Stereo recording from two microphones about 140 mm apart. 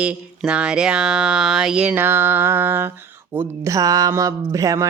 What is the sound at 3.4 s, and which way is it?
Speech, 20° right (ahead or behind).